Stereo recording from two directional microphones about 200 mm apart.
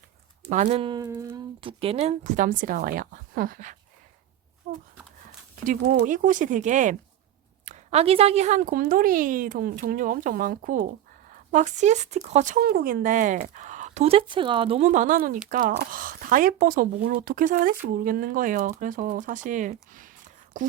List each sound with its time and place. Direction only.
0.4 s speech: 35° right (ahead or behind); by 1.4 s 15° right (ahead or behind)
1.6 s speech: 30° right (ahead or behind)
4.7 s a sound: 40° right (ahead or behind)
5.6 s speech: 40° right (ahead or behind)